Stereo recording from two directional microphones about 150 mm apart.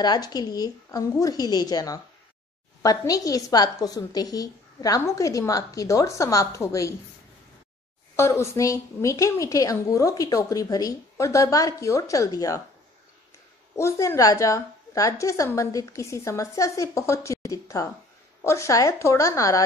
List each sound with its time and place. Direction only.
0.0 s a woman's voice: 25° left (ahead or behind)
8.2 s a woman's voice: 20° left (ahead or behind)
13.7 s a woman's voice: 20° left (ahead or behind)